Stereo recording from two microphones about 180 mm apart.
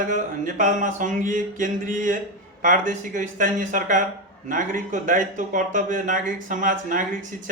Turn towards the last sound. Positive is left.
turn(degrees=-45)  # may be behind; listen again after turning